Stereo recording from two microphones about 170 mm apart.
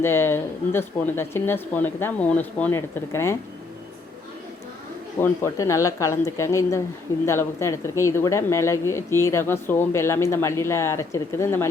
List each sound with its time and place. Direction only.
0.0 s speech: 15° left (ahead or behind)
5.2 s speech: 15° left (ahead or behind)